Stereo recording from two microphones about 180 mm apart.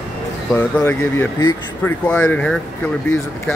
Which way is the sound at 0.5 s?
10° left (ahead or behind).